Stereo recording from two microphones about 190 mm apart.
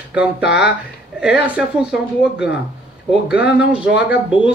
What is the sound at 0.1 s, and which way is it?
A man's voice, 5° right (ahead or behind).